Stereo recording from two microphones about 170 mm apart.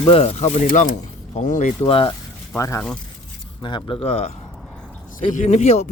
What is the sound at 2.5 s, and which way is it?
Speech, 15° left (ahead or behind).